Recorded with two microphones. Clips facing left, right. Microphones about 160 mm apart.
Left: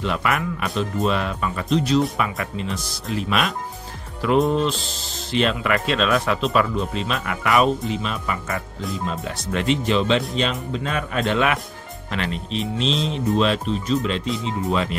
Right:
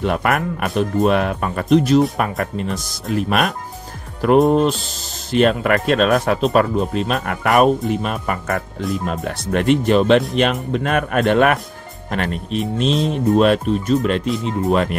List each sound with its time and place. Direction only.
0.0 s speech: 50° right (ahead or behind)